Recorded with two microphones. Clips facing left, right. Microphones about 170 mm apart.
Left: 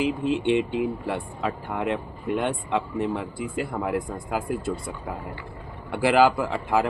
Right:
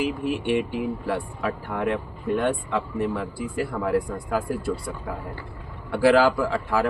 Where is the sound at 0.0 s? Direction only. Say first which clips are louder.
Left 2 dB; 20° left (ahead or behind).